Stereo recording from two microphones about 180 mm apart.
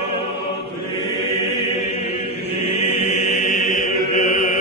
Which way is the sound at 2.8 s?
40° left (ahead or behind).